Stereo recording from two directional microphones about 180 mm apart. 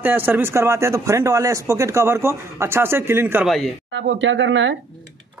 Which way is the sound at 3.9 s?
90° right.